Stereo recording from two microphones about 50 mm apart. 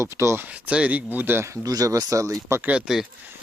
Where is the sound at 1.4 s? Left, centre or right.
Right.